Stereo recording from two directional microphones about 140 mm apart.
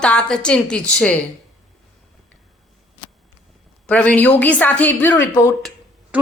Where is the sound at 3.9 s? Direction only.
10° left (ahead or behind).